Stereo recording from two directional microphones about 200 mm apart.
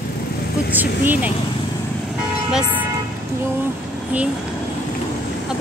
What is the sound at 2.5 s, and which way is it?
Speech, 10° right (ahead or behind).